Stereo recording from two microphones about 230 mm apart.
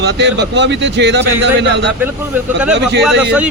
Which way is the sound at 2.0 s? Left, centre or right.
Centre.